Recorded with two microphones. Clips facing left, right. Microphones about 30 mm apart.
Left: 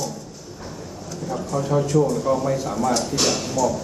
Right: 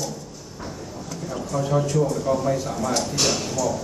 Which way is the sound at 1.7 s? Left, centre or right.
Centre.